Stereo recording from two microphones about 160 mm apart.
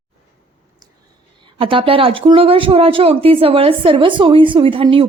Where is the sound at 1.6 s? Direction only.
35° right (ahead or behind).